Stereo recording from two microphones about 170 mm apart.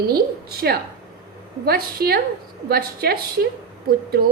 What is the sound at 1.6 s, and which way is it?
A woman's voice, 65° right (ahead or behind).